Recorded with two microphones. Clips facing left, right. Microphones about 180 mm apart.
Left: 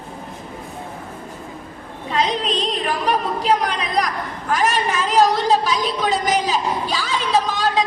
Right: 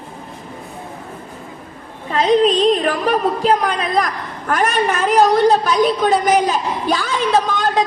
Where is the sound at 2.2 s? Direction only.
45° right (ahead or behind).